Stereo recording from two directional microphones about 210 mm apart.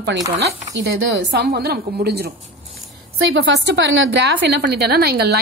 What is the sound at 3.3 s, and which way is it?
A woman's voice, 55° right (ahead or behind).